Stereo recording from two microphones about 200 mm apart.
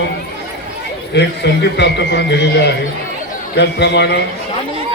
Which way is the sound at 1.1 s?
60° left (ahead or behind).